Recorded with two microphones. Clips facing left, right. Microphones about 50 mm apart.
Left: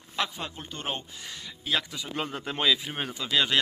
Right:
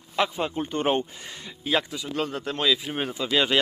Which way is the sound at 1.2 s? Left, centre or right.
Centre.